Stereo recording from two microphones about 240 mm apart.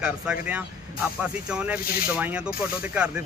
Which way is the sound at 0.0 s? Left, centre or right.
Centre.